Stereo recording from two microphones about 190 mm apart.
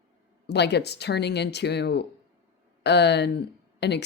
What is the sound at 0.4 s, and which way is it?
Speech, 60° left (ahead or behind).